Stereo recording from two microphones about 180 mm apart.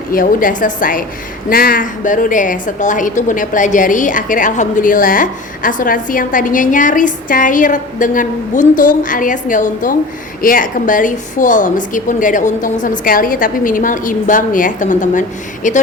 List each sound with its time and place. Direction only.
0.1 s a woman's voice: 50° left (ahead or behind)